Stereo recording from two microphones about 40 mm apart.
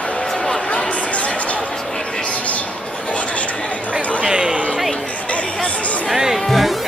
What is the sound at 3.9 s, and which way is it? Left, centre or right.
Chatter, centre.